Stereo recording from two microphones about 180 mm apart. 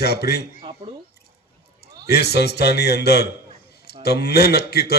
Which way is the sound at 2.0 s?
65° left (ahead or behind).